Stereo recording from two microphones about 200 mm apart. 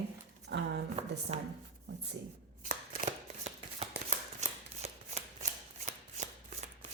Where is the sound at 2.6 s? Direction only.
35° right (ahead or behind).